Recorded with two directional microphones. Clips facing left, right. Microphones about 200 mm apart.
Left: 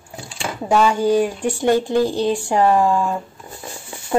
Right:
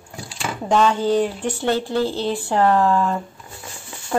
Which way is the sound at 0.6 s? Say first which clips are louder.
Left 2 dB; 10° left (ahead or behind).